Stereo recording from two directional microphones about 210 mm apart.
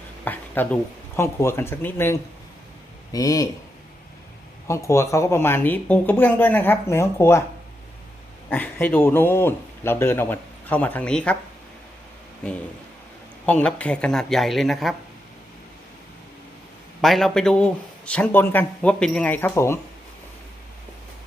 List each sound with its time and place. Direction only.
0.3 s speech: 10° left (ahead or behind)
4.7 s speech: 15° left (ahead or behind)
8.4 s speech: 10° left (ahead or behind)
13.4 s speech: 5° left (ahead or behind)
17.0 s speech: centre (ahead or behind)